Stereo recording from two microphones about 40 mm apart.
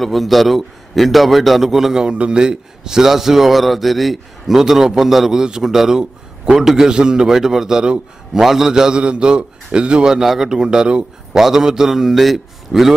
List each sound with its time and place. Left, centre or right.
0.0 s a man's voice: centre
2.0 s a man's voice: right
6.9 s a man's voice: right
7.2 s a man's voice: centre
10.1 s a man's voice: centre
11.3 s a man's voice: centre